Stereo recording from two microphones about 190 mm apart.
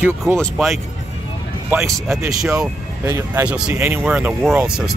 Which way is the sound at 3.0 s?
15° right (ahead or behind).